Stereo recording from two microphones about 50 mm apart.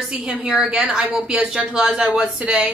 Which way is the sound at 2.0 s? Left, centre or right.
Right.